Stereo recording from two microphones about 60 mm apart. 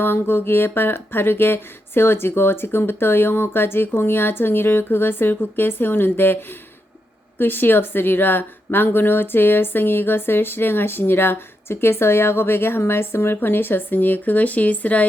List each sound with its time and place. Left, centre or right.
0.0 s speech: left